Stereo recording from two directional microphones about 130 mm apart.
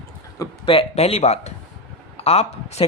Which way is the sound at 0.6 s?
45° left (ahead or behind).